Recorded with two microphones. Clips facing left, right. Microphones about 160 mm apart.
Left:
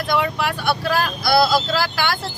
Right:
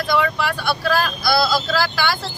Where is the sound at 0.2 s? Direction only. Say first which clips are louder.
Right 1 dB; 15° left (ahead or behind).